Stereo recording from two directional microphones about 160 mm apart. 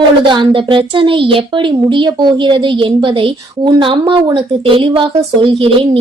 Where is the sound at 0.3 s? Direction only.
30° right (ahead or behind).